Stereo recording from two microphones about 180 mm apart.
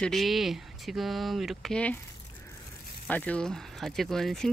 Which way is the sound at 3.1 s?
5° left (ahead or behind).